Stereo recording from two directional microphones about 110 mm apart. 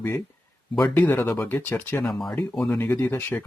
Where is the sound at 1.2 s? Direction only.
30° left (ahead or behind).